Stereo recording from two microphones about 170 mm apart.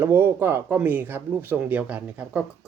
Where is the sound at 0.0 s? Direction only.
10° right (ahead or behind).